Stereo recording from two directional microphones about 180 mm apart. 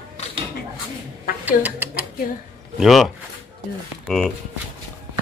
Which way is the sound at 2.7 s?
Centre (ahead or behind).